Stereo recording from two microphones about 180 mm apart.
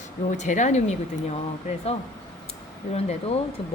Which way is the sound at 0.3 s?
40° left (ahead or behind).